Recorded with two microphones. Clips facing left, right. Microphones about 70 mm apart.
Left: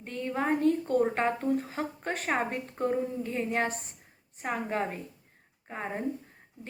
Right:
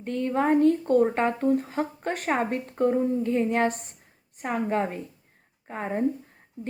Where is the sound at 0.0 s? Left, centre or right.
Right.